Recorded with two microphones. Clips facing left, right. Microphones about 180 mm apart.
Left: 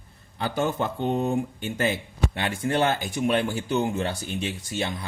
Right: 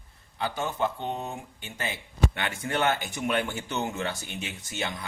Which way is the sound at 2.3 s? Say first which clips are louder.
Left 5 dB; 35° left (ahead or behind).